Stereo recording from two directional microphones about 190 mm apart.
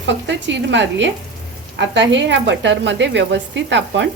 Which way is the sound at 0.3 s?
70° right (ahead or behind).